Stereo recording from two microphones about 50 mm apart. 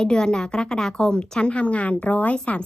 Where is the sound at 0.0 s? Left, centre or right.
Centre.